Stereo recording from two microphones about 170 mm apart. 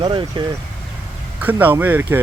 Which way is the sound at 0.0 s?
30° right (ahead or behind).